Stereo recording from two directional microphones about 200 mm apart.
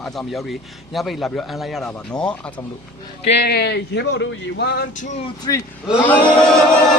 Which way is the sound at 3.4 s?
55° left (ahead or behind).